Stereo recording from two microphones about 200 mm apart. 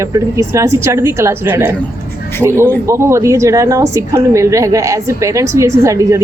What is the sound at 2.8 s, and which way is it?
A woman's voice, 15° right (ahead or behind).